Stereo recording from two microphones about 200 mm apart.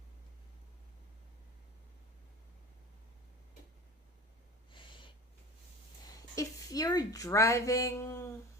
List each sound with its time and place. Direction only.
6.3 s speech: 15° left (ahead or behind)